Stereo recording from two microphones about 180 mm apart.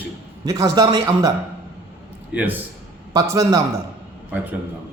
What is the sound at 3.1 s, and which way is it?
Speech, 20° right (ahead or behind).